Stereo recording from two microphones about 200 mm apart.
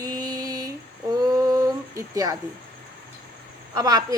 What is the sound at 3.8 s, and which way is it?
Speech, 20° right (ahead or behind).